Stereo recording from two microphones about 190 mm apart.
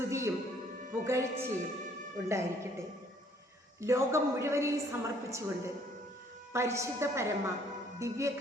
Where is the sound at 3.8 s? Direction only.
15° right (ahead or behind).